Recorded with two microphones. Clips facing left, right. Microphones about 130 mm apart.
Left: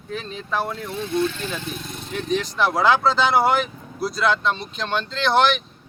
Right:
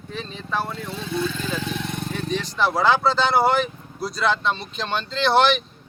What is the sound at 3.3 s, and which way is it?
Speech, 10° left (ahead or behind).